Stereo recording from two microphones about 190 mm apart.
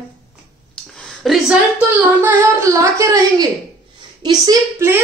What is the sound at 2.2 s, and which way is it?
Speech, 15° right (ahead or behind).